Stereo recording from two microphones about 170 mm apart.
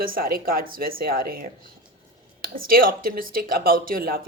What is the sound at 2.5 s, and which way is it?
A woman's voice, 60° right (ahead or behind).